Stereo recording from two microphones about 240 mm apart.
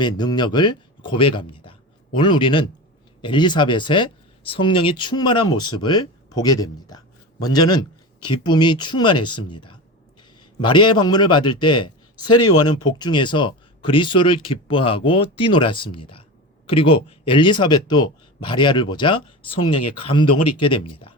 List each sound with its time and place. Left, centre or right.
0.0 s speech: centre